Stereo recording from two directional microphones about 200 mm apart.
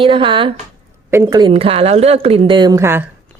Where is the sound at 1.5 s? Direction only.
30° right (ahead or behind); by 3.0 s 15° right (ahead or behind).